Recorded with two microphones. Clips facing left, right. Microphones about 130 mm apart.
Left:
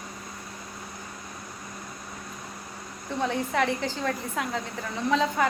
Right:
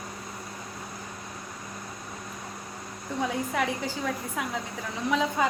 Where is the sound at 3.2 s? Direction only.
5° right (ahead or behind).